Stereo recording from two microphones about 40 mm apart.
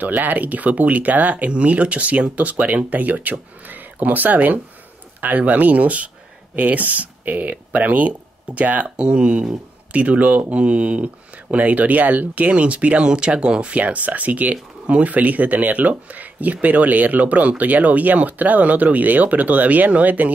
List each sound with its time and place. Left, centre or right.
0.0 s speech: right
8.9 s speech: right
9.9 s speech: right